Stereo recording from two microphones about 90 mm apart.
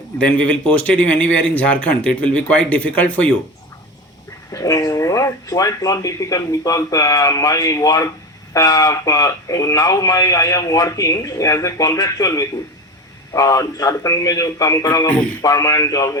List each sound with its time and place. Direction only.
0.2 s a man's voice: 15° left (ahead or behind)
4.5 s speech: 40° left (ahead or behind)